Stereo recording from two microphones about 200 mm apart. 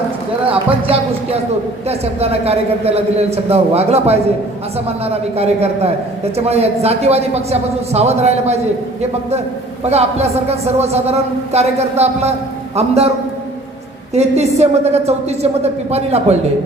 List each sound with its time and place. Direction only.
0.9 s a man's voice: 30° right (ahead or behind)
9.8 s a man's voice: 30° right (ahead or behind)
14.1 s a man's voice: 35° right (ahead or behind)